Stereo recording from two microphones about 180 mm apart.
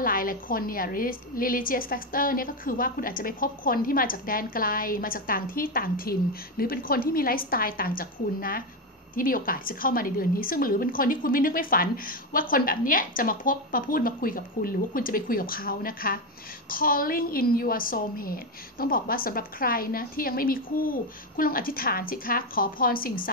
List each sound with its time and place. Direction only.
0.0 s a woman's voice: 50° left (ahead or behind)